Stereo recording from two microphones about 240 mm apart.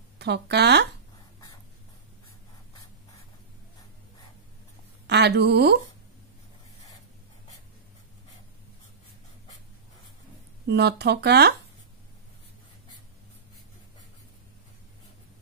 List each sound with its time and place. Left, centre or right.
0.2 s speech: right
5.0 s a woman's voice: right
10.7 s speech: right